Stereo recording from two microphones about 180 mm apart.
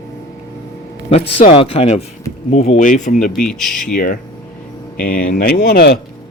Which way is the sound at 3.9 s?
50° left (ahead or behind).